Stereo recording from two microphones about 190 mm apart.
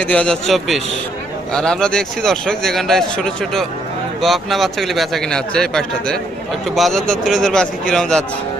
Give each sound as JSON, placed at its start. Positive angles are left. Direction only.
{"t": 0.0, "sound": "speech", "side_deg": 5}